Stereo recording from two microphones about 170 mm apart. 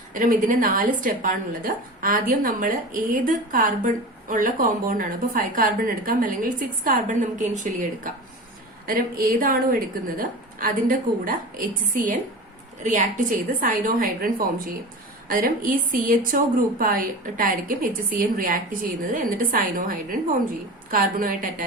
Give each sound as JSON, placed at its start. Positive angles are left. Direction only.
{"t": 0.1, "sound": "a woman's voice", "side_deg": -55}
{"t": 12.8, "sound": "a woman's voice", "side_deg": -45}